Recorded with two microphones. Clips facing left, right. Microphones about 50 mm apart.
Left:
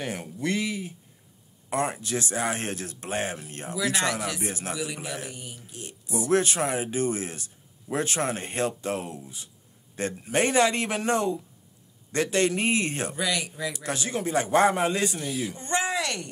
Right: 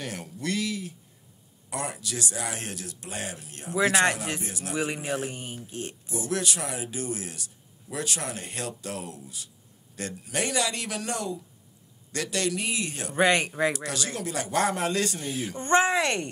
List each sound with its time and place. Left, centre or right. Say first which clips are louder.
0.0 s a man's voice: left 3 dB; left
3.7 s a man's voice: right 4 dB; right
4.4 s speech: left 4 dB; left
4.7 s a man's voice: right 4 dB; right
6.0 s speech: left 7 dB; left
13.1 s a man's voice: right 6 dB; right
13.8 s a man's voice: left 3 dB; left
15.2 s speech: right 1 dB; right